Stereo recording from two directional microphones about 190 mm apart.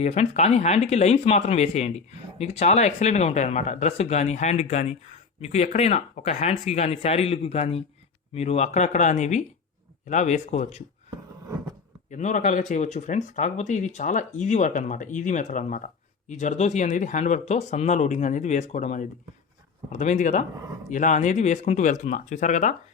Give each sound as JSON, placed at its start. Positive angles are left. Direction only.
{"t": 0.0, "sound": "speech", "side_deg": 35}
{"t": 12.1, "sound": "speech", "side_deg": 40}